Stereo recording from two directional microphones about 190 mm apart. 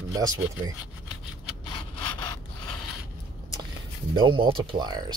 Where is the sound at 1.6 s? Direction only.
25° left (ahead or behind).